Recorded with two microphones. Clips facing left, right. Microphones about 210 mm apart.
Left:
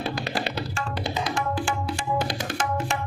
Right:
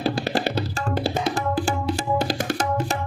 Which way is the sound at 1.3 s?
40° right (ahead or behind).